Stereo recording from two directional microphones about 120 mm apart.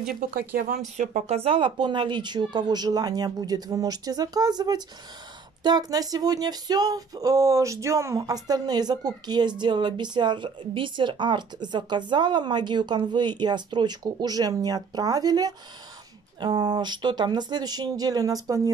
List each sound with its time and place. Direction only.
0.9 s speech: 75° right (ahead or behind)
1.4 s speech: 45° right (ahead or behind); by 18.6 s 30° right (ahead or behind)